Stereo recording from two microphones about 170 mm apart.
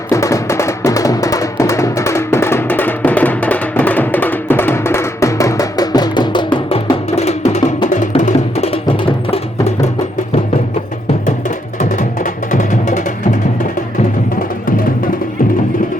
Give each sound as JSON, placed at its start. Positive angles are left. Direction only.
{"t": 0.1, "sound": "music", "side_deg": 20}
{"t": 11.3, "sound": "music", "side_deg": 50}